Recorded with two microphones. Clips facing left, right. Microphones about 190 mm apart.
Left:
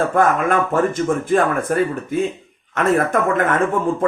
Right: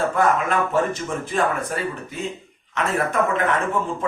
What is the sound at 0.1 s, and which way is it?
Speech, 50° left (ahead or behind).